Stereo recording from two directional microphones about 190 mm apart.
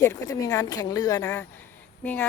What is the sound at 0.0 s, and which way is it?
Speech, 15° left (ahead or behind).